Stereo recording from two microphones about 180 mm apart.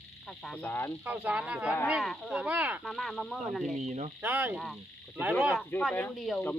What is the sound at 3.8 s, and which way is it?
Speech, 40° right (ahead or behind).